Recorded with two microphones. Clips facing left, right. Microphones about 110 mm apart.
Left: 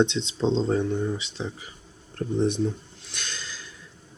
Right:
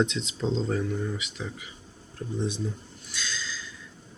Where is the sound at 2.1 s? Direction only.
60° left (ahead or behind).